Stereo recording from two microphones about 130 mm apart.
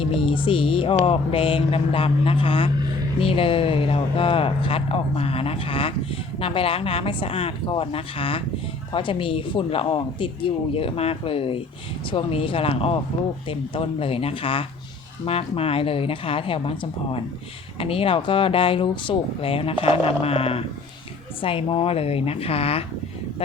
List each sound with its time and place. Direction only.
0.0 s speech: 40° left (ahead or behind)